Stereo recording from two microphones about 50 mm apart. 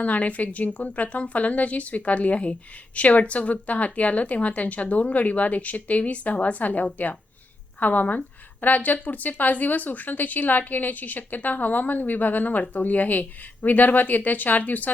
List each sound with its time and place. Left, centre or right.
0.0 s a woman's voice: left